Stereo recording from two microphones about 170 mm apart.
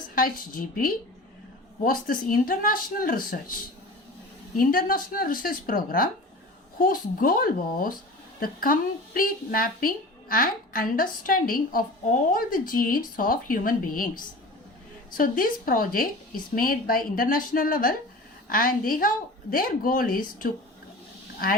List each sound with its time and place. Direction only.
0.1 s speech: 60° left (ahead or behind)
4.5 s speech: 55° left (ahead or behind)
15.2 s speech: 55° left (ahead or behind)